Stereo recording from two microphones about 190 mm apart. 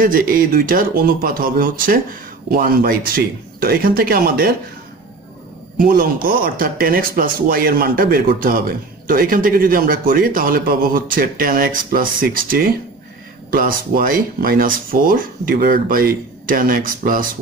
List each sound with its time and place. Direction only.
0.0 s speech: 50° right (ahead or behind)
5.8 s speech: 50° right (ahead or behind)